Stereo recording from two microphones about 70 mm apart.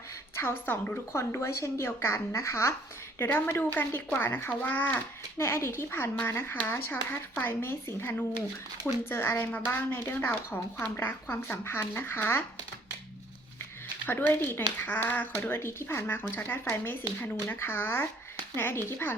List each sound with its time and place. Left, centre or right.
0.3 s speech: left
1.2 s speech: left
3.2 s speech: left
9.0 s speech: left
14.1 s speech: left